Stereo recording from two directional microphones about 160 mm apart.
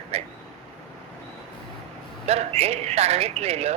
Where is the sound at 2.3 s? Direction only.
40° right (ahead or behind).